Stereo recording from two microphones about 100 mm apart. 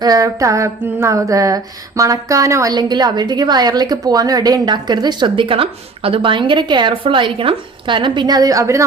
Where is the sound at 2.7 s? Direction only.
45° right (ahead or behind).